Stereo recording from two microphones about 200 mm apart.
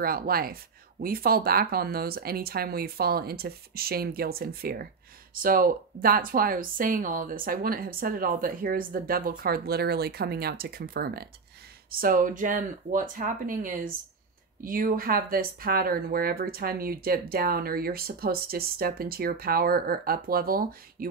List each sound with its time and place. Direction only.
0.0 s speech: 45° right (ahead or behind)